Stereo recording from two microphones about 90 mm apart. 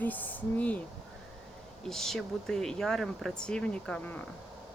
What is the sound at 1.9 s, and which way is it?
Speech, 5° left (ahead or behind).